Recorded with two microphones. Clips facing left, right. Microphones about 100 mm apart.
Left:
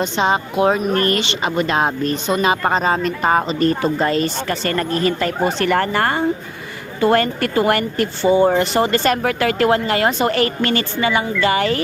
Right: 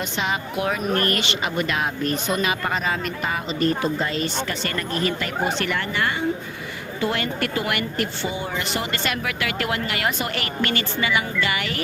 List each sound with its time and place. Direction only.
0.0 s speech: 30° left (ahead or behind)